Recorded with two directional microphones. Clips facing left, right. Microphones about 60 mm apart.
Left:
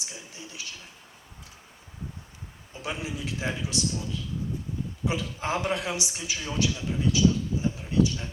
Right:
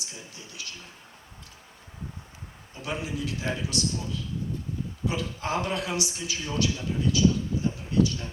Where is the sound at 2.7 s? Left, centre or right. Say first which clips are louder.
Right 1 dB; left.